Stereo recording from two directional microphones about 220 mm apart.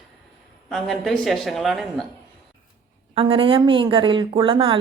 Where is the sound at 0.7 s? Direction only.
Centre (ahead or behind).